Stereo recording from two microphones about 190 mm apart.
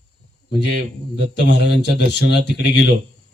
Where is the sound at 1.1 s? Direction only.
65° left (ahead or behind).